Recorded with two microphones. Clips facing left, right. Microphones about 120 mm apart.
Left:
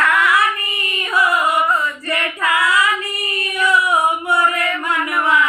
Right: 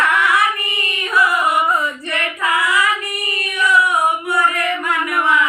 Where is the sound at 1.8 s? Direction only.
25° right (ahead or behind).